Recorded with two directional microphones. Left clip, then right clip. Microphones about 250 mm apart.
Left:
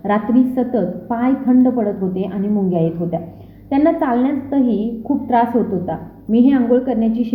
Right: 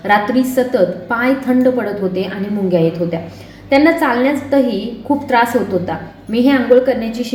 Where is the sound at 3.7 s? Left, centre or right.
Left.